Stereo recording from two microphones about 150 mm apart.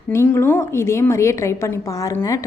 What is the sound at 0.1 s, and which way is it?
A woman's voice, 15° left (ahead or behind).